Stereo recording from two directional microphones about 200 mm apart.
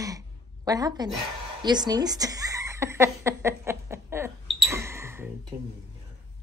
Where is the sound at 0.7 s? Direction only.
20° right (ahead or behind).